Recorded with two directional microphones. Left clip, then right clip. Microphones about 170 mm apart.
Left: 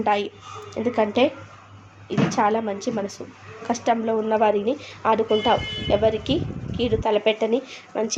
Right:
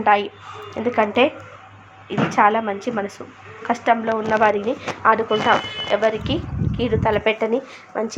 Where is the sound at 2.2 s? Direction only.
Centre (ahead or behind); by 6.3 s 15° left (ahead or behind).